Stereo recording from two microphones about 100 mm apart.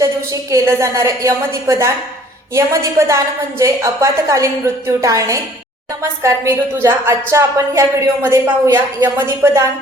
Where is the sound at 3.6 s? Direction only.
30° right (ahead or behind).